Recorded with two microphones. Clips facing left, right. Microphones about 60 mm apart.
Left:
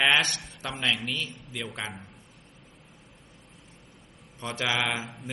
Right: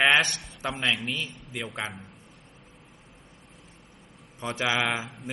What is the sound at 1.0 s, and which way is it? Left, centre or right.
Speech, centre.